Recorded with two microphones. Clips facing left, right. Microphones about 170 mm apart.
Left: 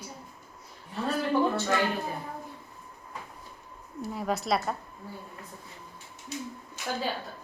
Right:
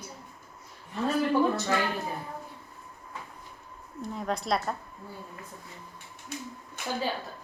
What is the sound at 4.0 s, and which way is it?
Speech, 5° left (ahead or behind).